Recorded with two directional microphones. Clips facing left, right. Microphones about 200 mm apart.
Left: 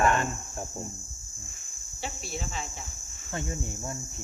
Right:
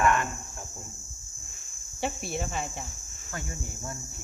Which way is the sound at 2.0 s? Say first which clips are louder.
Right 5 dB; 55° right (ahead or behind).